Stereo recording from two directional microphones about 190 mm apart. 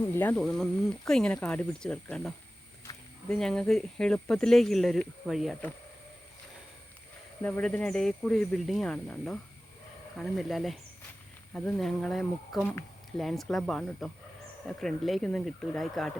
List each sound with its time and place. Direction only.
0.0 s speech: 10° left (ahead or behind)
2.9 s a sound: 15° left (ahead or behind)
3.2 s speech: 5° left (ahead or behind)
7.4 s speech: 5° left (ahead or behind)